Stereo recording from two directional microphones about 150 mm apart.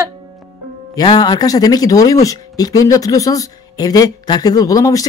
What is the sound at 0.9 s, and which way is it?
Speech, 25° left (ahead or behind).